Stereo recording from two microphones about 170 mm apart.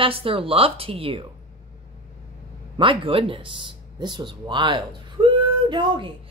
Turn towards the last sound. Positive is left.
turn(degrees=-30)  # may be behind; listen again after turning